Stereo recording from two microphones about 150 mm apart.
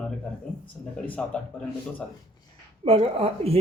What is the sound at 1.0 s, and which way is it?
Speech, 10° left (ahead or behind).